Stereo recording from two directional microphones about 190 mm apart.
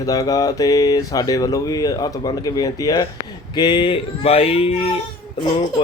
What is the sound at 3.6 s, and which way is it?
Male singing, 25° left (ahead or behind).